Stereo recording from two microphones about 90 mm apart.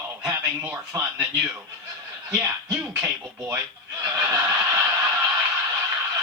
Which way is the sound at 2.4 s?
20° right (ahead or behind).